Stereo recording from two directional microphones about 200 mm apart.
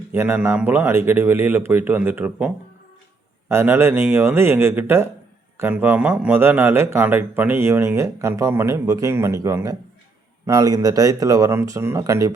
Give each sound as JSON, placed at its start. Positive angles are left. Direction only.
{"t": 0.1, "sound": "a man's voice", "side_deg": -10}
{"t": 3.5, "sound": "a man's voice", "side_deg": -10}